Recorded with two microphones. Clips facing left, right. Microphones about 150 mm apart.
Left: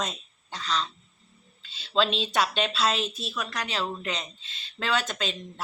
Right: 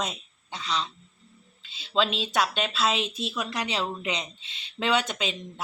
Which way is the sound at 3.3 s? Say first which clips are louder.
Right 2 dB; 20° right (ahead or behind).